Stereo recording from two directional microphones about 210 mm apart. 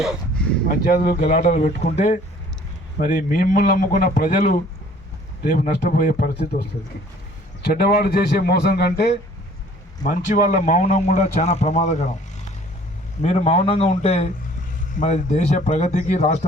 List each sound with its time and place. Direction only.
0.0 s speech: centre (ahead or behind)
0.7 s a man's voice: 40° left (ahead or behind)
10.0 s a man's voice: 35° left (ahead or behind)
13.2 s a man's voice: 30° left (ahead or behind)